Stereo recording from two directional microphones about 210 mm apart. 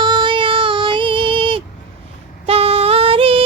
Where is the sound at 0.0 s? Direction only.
20° right (ahead or behind).